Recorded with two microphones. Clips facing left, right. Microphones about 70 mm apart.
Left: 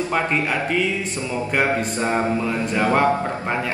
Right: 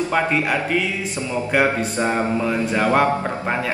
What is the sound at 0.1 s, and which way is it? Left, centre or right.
Speech, centre.